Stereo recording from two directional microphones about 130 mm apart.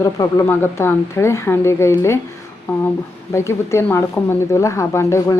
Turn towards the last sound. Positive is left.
turn(degrees=20)  # may be behind; listen again after turning